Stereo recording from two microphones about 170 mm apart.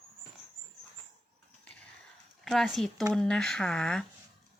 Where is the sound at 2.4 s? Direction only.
Centre (ahead or behind).